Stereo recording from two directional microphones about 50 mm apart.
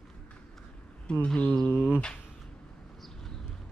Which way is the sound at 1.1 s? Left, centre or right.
Centre.